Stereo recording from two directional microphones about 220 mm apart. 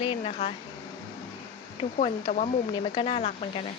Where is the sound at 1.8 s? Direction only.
20° left (ahead or behind).